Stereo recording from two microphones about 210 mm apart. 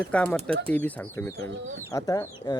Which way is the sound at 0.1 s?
5° left (ahead or behind).